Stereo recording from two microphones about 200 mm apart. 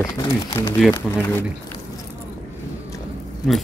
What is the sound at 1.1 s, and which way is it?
Speech, 5° left (ahead or behind).